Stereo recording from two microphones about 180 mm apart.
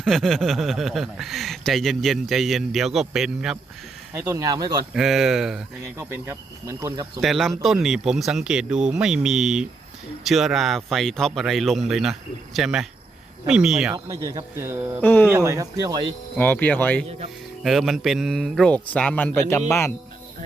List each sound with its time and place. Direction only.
0.0 s speech: centre (ahead or behind)
4.1 s speech: 15° right (ahead or behind)
4.9 s speech: centre (ahead or behind)
7.2 s speech: centre (ahead or behind)
13.9 s speech: 15° right (ahead or behind)
15.0 s cricket: 10° left (ahead or behind)
15.3 s speech: 15° right (ahead or behind)
16.4 s cricket: 10° left (ahead or behind)
17.6 s speech: centre (ahead or behind)